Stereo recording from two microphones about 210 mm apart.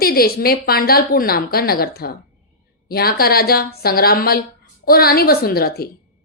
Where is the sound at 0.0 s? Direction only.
45° left (ahead or behind).